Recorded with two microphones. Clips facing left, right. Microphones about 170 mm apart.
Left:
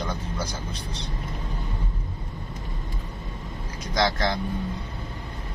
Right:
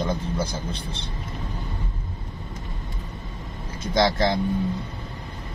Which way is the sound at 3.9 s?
25° right (ahead or behind).